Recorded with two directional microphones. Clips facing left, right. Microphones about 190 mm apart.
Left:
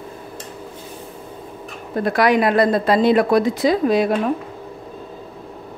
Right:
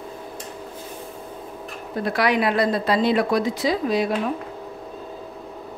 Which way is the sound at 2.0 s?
45° left (ahead or behind).